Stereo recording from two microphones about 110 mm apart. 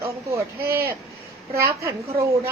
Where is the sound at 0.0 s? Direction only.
25° right (ahead or behind).